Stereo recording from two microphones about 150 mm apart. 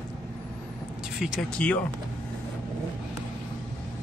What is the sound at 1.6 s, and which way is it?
Speech, 10° left (ahead or behind).